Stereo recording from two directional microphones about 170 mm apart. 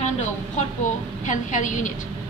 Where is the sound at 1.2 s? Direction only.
50° left (ahead or behind).